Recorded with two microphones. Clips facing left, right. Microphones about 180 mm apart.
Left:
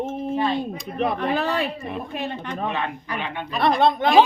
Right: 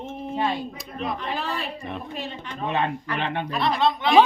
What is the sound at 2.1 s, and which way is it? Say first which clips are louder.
Speech: left 5 dB; 60° left (ahead or behind).